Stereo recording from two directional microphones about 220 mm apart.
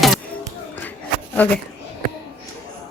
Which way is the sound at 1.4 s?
5° left (ahead or behind).